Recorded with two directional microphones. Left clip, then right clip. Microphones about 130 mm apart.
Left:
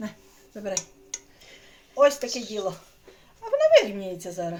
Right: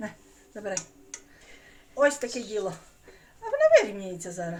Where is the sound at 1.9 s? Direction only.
15° left (ahead or behind).